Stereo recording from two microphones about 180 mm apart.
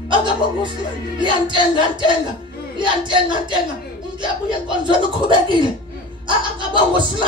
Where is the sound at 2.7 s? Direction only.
25° right (ahead or behind).